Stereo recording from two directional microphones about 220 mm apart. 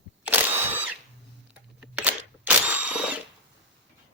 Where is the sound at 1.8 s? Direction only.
5° right (ahead or behind).